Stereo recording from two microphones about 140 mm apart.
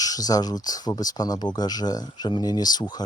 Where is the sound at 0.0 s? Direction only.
25° left (ahead or behind).